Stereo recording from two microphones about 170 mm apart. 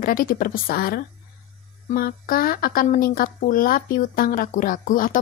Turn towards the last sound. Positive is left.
turn(degrees=55)  # may be behind; listen again after turning